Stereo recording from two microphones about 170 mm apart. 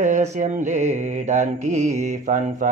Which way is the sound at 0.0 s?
45° right (ahead or behind).